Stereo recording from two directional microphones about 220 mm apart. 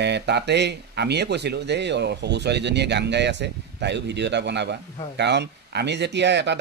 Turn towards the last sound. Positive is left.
turn(degrees=-50)  # may be behind; listen again after turning